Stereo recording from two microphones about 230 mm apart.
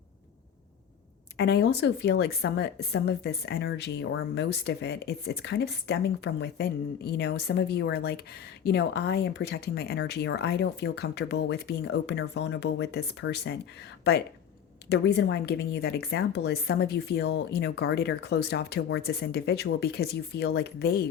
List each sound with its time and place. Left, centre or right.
1.4 s a woman's voice: left